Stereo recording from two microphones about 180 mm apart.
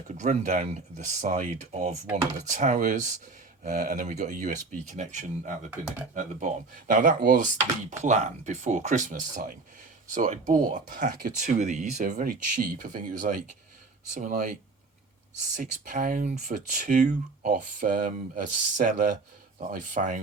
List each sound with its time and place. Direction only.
0.1 s speech: 40° right (ahead or behind)
8.0 s speech: 40° right (ahead or behind); by 11.3 s 55° right (ahead or behind)
11.3 s speech: 45° right (ahead or behind)
15.5 s speech: 45° right (ahead or behind)